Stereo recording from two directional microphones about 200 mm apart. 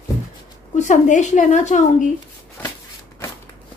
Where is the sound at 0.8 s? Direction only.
40° left (ahead or behind).